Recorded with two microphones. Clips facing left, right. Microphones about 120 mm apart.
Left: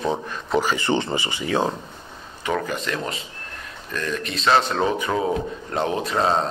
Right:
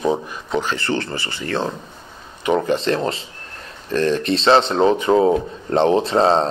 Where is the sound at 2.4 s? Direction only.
25° right (ahead or behind).